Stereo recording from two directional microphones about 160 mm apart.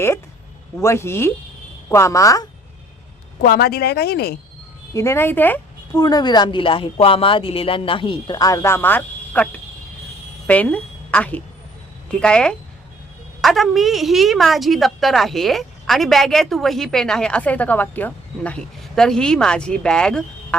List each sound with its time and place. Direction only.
0.8 s a woman's voice: 15° left (ahead or behind)
3.4 s speech: 70° left (ahead or behind)
4.9 s a woman's voice: 15° left (ahead or behind)
6.0 s a woman's voice: 25° left (ahead or behind); by 20.6 s 5° left (ahead or behind)